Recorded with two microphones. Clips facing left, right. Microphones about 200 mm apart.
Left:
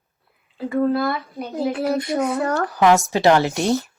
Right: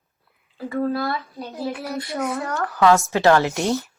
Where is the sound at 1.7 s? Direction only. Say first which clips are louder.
Left 7 dB; 30° left (ahead or behind).